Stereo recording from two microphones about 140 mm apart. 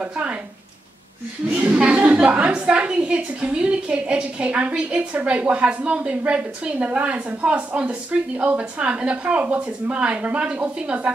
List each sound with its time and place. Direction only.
0.0 s a woman's voice: 10° right (ahead or behind)
1.5 s a woman's voice: 10° right (ahead or behind)